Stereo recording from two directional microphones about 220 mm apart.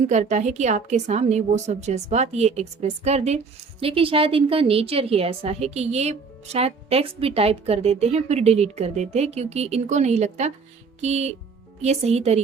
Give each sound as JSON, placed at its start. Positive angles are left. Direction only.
{"t": 0.0, "sound": "a woman's voice", "side_deg": -30}